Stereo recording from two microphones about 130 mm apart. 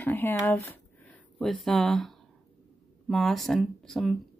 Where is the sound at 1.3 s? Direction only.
Centre (ahead or behind).